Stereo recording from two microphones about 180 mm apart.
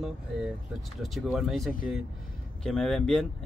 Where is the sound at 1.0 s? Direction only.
Centre (ahead or behind).